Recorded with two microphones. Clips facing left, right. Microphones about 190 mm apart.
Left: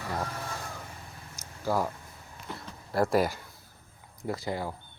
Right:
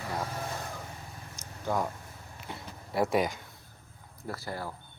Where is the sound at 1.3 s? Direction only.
5° left (ahead or behind).